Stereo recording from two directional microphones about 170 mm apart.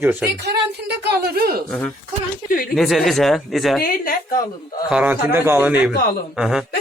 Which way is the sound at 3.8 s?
55° left (ahead or behind).